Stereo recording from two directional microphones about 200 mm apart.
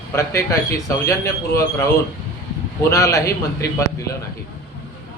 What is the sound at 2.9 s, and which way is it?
A man's voice, 15° left (ahead or behind).